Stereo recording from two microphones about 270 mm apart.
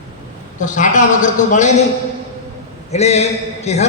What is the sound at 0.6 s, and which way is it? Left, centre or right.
A man's voice, left.